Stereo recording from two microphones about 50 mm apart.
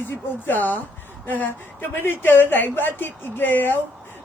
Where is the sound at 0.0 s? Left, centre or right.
Left.